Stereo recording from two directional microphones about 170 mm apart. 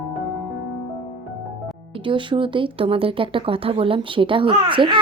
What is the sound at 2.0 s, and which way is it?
A child's voice, 30° right (ahead or behind).